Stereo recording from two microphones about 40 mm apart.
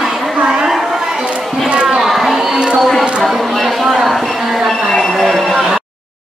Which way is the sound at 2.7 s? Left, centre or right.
Centre.